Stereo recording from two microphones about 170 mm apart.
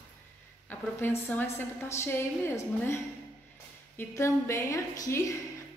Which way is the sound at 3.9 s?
15° left (ahead or behind).